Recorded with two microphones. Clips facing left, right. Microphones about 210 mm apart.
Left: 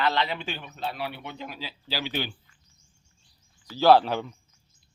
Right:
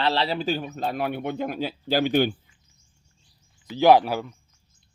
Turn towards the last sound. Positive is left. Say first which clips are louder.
# right 2 dB
turn(degrees=-5)  # may be behind; listen again after turning